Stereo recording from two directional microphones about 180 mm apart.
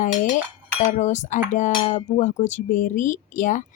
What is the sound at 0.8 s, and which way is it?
Speech, 40° left (ahead or behind).